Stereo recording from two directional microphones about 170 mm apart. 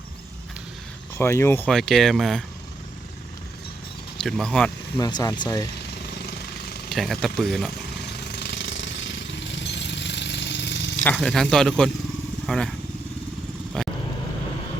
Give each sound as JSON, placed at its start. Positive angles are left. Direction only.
{"t": 1.2, "sound": "speech", "side_deg": 15}
{"t": 1.7, "sound": "speech", "side_deg": 0}
{"t": 4.2, "sound": "speech", "side_deg": 5}
{"t": 4.9, "sound": "speech", "side_deg": 20}
{"t": 6.9, "sound": "speech", "side_deg": 0}
{"t": 7.9, "sound": "jackhammer", "side_deg": 75}
{"t": 11.0, "sound": "speech", "side_deg": 5}
{"t": 13.8, "sound": "vehicle", "side_deg": 5}